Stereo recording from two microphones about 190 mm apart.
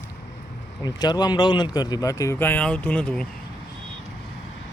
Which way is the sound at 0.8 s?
20° left (ahead or behind).